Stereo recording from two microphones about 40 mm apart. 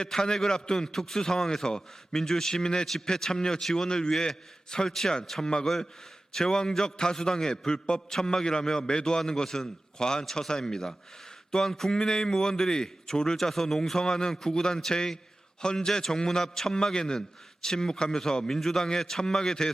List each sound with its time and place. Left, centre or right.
0.0 s a man's voice: centre